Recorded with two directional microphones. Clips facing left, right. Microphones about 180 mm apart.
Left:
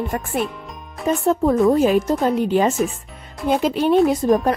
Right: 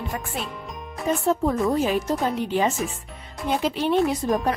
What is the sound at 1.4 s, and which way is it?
A woman's voice, 55° left (ahead or behind).